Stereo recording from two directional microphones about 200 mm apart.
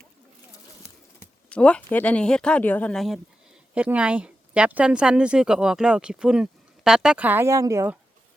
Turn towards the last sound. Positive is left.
turn(degrees=-10)  # may be behind; listen again after turning